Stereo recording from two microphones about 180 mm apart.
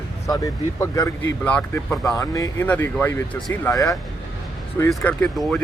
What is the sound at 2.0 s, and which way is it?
Speech, 20° left (ahead or behind).